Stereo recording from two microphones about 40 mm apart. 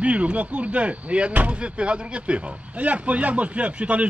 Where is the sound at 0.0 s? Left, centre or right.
Right.